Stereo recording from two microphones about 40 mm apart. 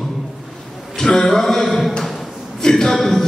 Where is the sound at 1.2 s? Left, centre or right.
Centre.